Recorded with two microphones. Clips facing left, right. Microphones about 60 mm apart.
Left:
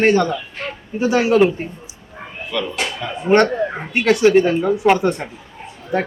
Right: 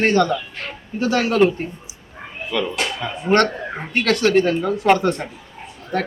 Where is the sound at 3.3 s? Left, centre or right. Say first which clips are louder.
Left 3 dB; centre.